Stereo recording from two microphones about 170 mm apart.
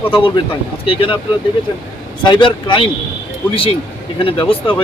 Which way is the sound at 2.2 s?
30° left (ahead or behind).